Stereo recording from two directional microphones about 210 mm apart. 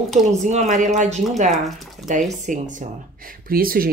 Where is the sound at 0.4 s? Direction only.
35° right (ahead or behind).